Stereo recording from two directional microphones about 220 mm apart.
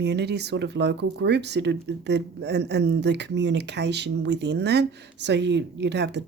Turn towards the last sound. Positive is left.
turn(degrees=-50)  # may be behind; listen again after turning